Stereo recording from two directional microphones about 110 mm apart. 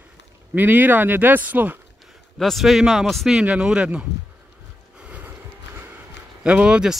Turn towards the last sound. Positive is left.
turn(degrees=-10)  # may be behind; listen again after turning